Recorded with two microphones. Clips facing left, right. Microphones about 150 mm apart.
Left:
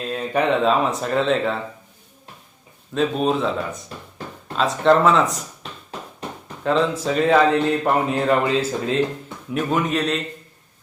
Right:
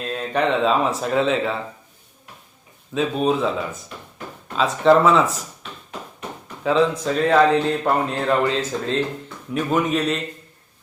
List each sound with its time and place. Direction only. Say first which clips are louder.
0.0 s speech: even; centre (ahead or behind)
2.9 s speech: even; centre (ahead or behind)
6.6 s speech: right 1 dB; centre (ahead or behind)